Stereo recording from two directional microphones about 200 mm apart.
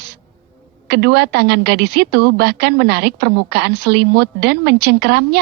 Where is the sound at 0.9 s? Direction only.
55° right (ahead or behind).